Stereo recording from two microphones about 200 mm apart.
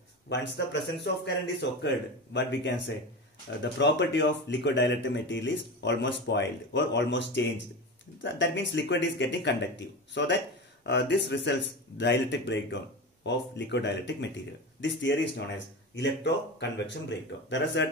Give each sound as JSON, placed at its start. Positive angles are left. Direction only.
{"t": 0.3, "sound": "speech", "side_deg": 60}